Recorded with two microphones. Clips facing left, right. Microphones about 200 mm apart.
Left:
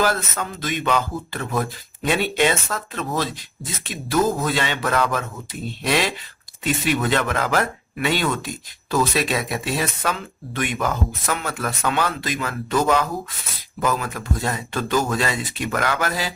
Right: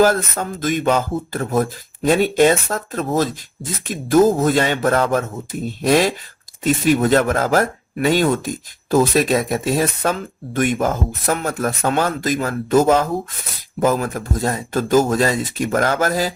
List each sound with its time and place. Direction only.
0.0 s speech: 45° right (ahead or behind)